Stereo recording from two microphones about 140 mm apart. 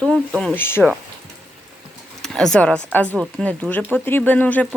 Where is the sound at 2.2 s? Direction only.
5° left (ahead or behind).